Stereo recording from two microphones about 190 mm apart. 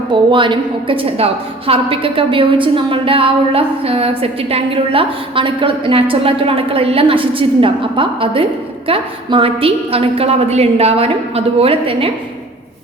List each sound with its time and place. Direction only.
0.1 s a woman's voice: 25° right (ahead or behind)